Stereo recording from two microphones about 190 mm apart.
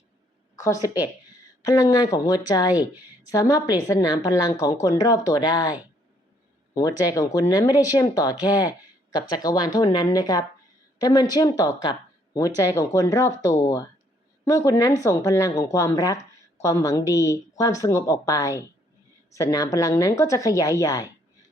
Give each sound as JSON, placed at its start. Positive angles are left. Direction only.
{"t": 0.6, "sound": "speech", "side_deg": 15}
{"t": 3.5, "sound": "speech", "side_deg": 20}
{"t": 7.0, "sound": "a woman's voice", "side_deg": 20}